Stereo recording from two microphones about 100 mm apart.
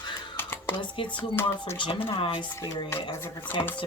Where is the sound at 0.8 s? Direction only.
50° left (ahead or behind).